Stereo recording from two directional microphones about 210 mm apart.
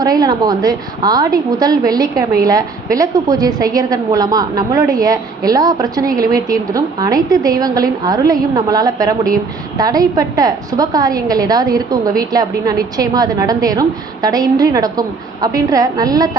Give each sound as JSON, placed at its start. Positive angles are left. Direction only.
{"t": 0.0, "sound": "a woman's voice", "side_deg": -20}